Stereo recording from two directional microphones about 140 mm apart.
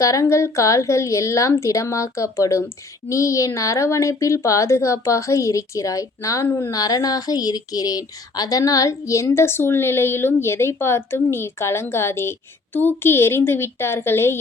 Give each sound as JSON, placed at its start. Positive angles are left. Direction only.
{"t": 0.0, "sound": "a woman's voice", "side_deg": 25}